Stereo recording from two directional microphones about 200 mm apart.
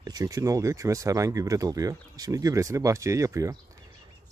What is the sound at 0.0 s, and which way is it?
Speech, 15° right (ahead or behind).